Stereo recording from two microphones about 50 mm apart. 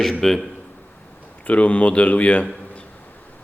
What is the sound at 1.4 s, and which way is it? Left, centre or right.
A man's voice, left.